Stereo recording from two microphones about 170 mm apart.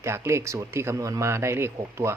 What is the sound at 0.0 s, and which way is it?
Speech, 15° right (ahead or behind).